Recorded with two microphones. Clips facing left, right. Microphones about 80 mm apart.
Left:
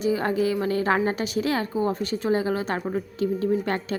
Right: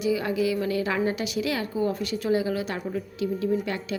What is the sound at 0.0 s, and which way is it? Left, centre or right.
A woman's voice, left.